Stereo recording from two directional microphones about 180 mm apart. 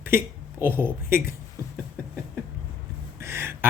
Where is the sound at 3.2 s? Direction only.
15° right (ahead or behind).